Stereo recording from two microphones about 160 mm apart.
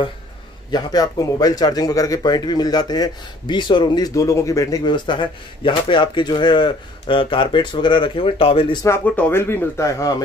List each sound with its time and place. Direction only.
0.7 s a man's voice: 25° left (ahead or behind)
8.8 s speech: 15° left (ahead or behind)